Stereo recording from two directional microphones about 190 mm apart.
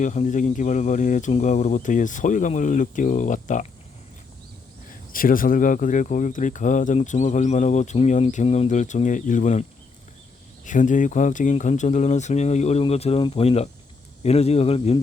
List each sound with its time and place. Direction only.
0.0 s speech: 40° left (ahead or behind)
5.1 s speech: 45° left (ahead or behind)
10.7 s speech: 40° left (ahead or behind)